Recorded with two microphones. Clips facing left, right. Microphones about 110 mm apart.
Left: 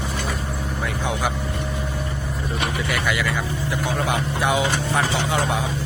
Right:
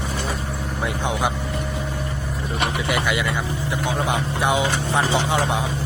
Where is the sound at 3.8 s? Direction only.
20° right (ahead or behind).